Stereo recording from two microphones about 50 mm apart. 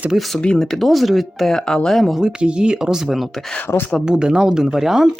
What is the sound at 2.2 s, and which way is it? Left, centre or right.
Speech, centre.